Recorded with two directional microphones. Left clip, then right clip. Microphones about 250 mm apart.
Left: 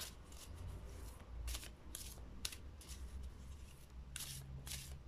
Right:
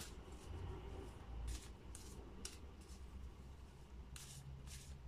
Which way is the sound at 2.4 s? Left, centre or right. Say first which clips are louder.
Left 9 dB; left.